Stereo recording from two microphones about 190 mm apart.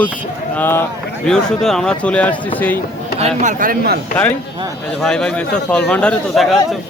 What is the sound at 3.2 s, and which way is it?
Speech, 35° right (ahead or behind).